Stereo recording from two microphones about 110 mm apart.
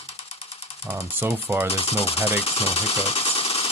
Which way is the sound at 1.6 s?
65° left (ahead or behind).